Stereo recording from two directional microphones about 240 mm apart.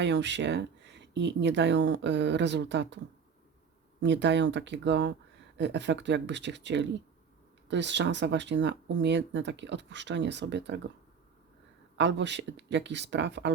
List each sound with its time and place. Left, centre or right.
0.0 s speech: right
4.0 s speech: right
11.9 s speech: right